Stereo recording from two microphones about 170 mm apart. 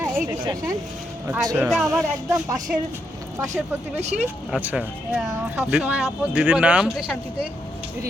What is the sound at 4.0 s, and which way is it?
Speech, 40° right (ahead or behind).